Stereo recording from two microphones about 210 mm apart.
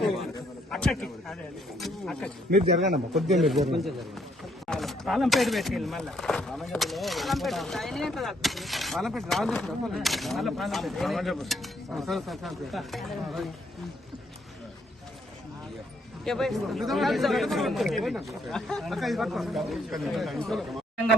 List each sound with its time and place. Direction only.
0.0 s a sound: centre (ahead or behind)
0.7 s speech: 5° left (ahead or behind)
2.5 s speech: 35° right (ahead or behind)
3.2 s speech: centre (ahead or behind)
4.6 s speech: centre (ahead or behind)
16.2 s speech: centre (ahead or behind)